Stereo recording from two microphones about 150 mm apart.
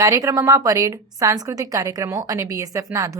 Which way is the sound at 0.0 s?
20° right (ahead or behind).